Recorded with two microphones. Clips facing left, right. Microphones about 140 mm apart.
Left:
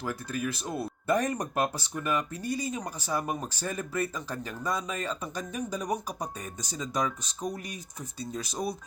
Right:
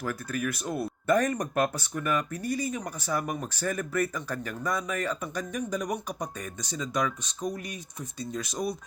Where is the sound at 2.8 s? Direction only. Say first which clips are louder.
Right 1 dB; 30° left (ahead or behind).